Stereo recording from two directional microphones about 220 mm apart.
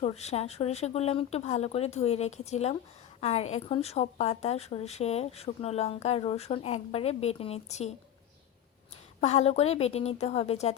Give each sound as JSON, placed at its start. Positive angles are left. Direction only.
{"t": 0.0, "sound": "a woman's voice", "side_deg": 30}
{"t": 9.2, "sound": "a woman's voice", "side_deg": 30}